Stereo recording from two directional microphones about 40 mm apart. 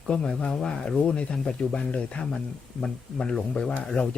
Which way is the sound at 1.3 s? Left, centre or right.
Centre.